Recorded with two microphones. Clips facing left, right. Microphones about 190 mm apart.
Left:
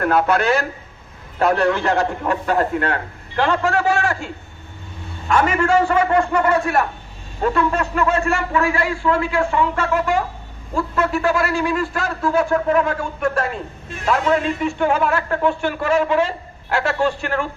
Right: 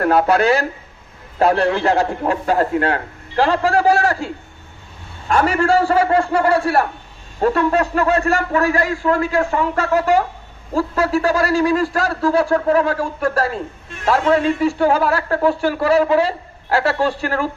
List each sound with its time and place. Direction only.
0.0 s a man's voice: 35° right (ahead or behind)
5.3 s a man's voice: 35° right (ahead or behind)